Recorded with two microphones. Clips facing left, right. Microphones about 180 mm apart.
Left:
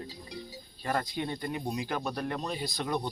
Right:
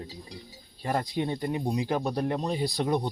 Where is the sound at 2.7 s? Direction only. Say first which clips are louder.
Right 6 dB; 35° right (ahead or behind).